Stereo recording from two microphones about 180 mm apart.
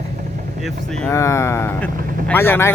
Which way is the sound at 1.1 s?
15° left (ahead or behind).